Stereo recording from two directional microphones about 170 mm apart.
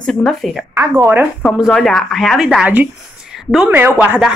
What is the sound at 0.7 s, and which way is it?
Speech, 15° right (ahead or behind).